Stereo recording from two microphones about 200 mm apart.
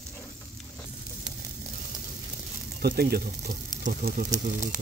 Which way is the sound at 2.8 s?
50° right (ahead or behind).